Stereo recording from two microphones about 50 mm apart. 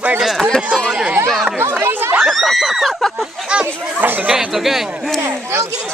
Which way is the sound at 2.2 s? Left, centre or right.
Centre.